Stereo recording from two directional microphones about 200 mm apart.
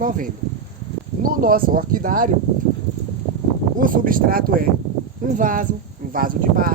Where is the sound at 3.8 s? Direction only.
45° right (ahead or behind).